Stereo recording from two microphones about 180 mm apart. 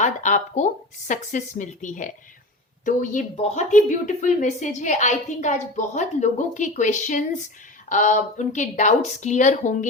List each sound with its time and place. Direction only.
0.0 s a woman's voice: 45° left (ahead or behind)